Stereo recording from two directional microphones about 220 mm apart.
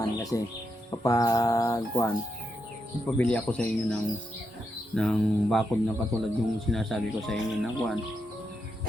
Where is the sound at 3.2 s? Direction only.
5° left (ahead or behind).